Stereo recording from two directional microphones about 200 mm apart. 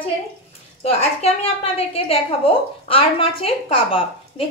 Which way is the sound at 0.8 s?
30° left (ahead or behind).